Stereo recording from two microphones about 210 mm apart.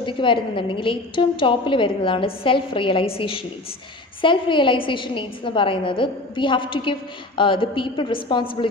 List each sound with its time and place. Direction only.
0.0 s a woman's voice: 25° left (ahead or behind)